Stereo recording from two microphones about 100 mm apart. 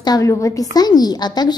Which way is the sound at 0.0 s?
40° left (ahead or behind).